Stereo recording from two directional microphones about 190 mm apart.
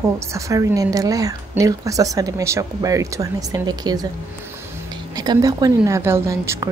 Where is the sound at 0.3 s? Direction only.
15° right (ahead or behind).